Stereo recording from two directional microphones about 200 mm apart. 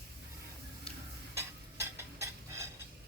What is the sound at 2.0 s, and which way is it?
Stir, 15° right (ahead or behind).